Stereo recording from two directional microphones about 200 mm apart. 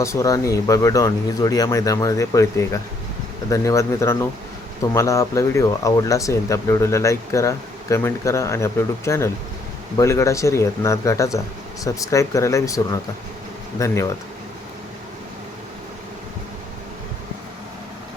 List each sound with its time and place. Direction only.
0.0 s speech: 15° left (ahead or behind)